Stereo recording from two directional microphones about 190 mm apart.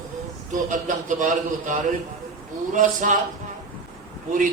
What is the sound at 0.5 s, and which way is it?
A man's voice, 40° right (ahead or behind).